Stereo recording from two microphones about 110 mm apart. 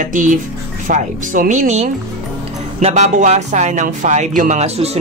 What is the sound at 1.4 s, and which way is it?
Speech, 90° right.